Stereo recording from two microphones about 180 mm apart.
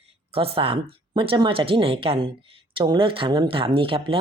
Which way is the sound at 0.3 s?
30° right (ahead or behind).